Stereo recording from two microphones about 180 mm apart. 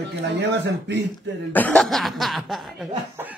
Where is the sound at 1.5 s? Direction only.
5° left (ahead or behind).